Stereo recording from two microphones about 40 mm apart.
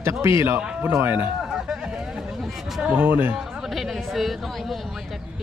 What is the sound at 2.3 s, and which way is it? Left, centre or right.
Chatter, centre.